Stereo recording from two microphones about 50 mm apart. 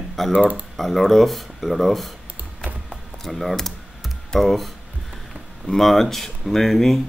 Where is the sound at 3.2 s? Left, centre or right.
Centre.